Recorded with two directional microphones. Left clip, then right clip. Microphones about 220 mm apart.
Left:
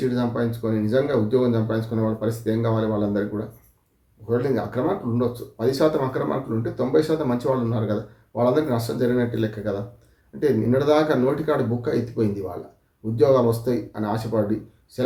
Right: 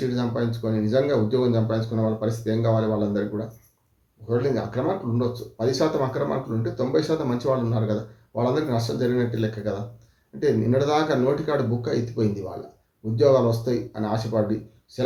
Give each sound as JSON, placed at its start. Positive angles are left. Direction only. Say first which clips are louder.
{"t": 0.1, "sound": "speech", "louder": "left 2 dB", "side_deg": 5}